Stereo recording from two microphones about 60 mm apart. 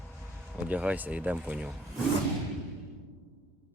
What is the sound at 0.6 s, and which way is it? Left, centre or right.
Speech, right.